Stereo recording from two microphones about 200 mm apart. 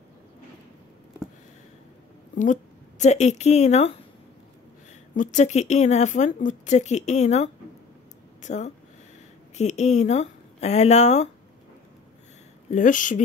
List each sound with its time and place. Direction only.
2.3 s speech: 40° left (ahead or behind)
5.1 s speech: 40° left (ahead or behind)
12.6 s speech: 40° left (ahead or behind)